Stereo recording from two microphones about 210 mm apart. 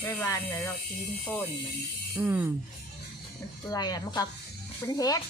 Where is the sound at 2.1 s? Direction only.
10° right (ahead or behind).